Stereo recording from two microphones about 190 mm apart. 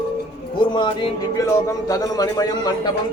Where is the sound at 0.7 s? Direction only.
25° left (ahead or behind).